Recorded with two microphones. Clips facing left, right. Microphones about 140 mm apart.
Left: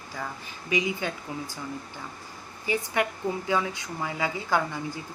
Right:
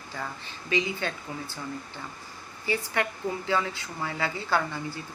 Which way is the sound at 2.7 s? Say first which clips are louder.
Left 2 dB; 15° left (ahead or behind).